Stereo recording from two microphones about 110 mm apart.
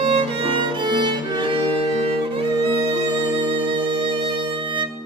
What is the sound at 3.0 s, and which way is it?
Music, 45° right (ahead or behind).